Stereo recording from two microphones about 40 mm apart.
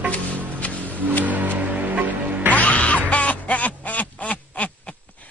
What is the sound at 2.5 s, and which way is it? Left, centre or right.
Quack, left.